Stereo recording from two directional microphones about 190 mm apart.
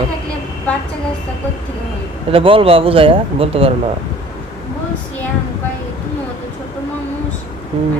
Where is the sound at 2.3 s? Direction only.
30° right (ahead or behind).